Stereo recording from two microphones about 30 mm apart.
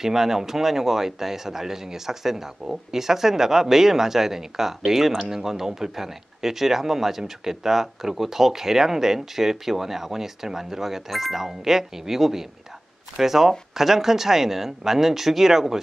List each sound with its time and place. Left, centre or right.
0.0 s speech: centre